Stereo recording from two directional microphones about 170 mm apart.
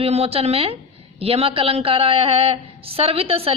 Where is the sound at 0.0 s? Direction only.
35° right (ahead or behind).